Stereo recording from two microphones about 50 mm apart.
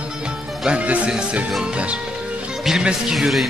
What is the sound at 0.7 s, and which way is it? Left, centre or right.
Speech, right.